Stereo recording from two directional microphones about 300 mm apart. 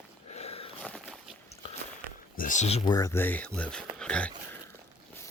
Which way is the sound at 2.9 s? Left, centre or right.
Centre.